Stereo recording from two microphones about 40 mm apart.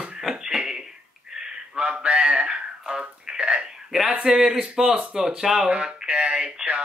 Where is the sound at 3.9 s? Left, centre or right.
Centre.